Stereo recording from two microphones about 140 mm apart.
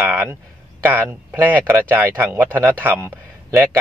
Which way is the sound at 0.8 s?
15° right (ahead or behind).